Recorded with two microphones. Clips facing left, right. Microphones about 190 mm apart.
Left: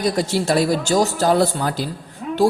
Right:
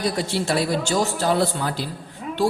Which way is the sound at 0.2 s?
40° left (ahead or behind).